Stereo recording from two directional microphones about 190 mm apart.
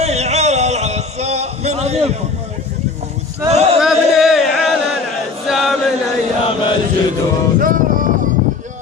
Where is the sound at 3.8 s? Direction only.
Centre (ahead or behind).